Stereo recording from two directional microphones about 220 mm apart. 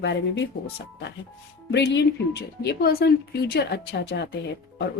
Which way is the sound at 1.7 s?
50° left (ahead or behind).